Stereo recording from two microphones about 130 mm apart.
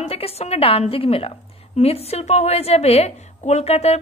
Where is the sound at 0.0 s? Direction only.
50° left (ahead or behind).